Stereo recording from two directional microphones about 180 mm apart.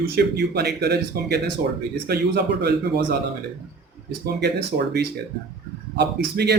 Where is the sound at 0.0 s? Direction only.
65° right (ahead or behind).